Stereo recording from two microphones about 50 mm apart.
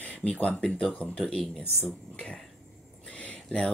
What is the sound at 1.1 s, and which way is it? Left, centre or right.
Speech, centre.